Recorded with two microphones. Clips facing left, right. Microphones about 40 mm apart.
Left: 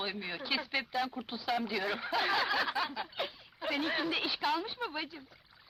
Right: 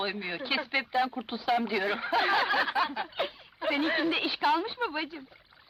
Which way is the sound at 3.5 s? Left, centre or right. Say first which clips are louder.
Right 6 dB; centre.